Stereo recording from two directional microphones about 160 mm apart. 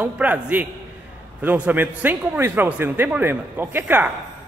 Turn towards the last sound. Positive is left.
turn(degrees=-10)  # may be behind; listen again after turning